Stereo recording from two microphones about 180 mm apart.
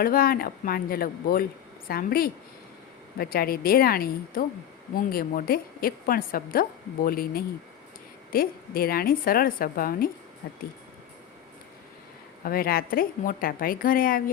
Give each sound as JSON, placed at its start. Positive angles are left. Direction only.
{"t": 0.0, "sound": "a woman's voice", "side_deg": 55}
{"t": 12.5, "sound": "a woman's voice", "side_deg": 55}